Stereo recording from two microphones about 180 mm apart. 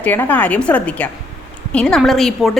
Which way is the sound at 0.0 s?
10° left (ahead or behind).